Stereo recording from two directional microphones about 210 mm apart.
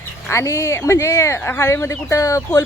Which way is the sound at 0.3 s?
15° left (ahead or behind).